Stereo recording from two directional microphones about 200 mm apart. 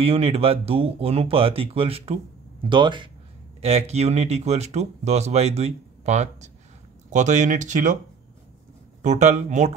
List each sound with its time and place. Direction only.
0.0 s speech: 30° right (ahead or behind)
9.0 s speech: 35° right (ahead or behind)